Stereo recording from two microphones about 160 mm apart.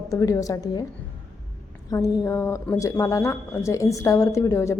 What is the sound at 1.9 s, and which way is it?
A woman's voice, 20° left (ahead or behind).